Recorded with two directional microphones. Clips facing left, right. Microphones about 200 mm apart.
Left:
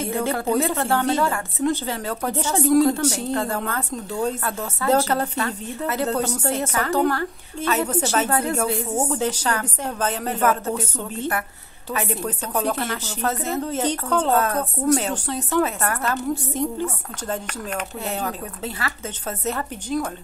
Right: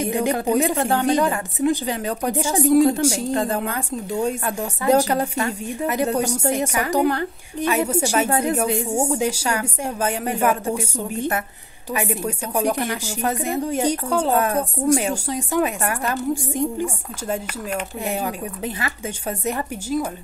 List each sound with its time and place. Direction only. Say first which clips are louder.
0.0 s speech: right 3 dB; 15° right (ahead or behind)